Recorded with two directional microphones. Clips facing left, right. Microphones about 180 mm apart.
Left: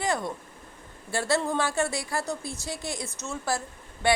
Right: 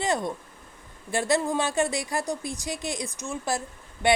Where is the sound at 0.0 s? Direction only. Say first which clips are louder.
Right 2 dB; 20° right (ahead or behind).